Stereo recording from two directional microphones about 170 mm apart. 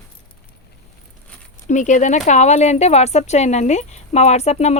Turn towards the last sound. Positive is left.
turn(degrees=40)  # may be behind; listen again after turning